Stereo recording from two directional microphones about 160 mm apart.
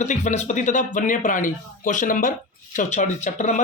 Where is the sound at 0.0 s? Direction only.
50° left (ahead or behind).